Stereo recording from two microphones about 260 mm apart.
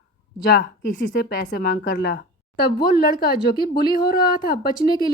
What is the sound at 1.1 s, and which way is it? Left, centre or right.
Speech, left.